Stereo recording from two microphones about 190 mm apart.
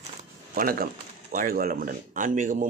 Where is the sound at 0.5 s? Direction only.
50° right (ahead or behind).